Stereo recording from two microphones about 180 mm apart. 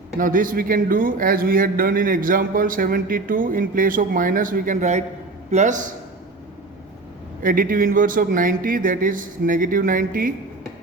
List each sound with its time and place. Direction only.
0.2 s a man's voice: 50° right (ahead or behind)
7.4 s a man's voice: 50° right (ahead or behind)